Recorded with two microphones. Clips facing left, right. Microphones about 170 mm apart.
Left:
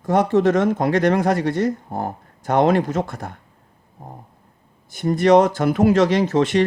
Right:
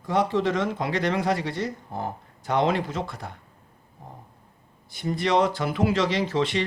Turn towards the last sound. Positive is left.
turn(degrees=45)  # may be behind; listen again after turning